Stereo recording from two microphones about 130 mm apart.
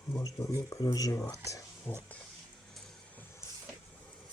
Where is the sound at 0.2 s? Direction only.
25° left (ahead or behind).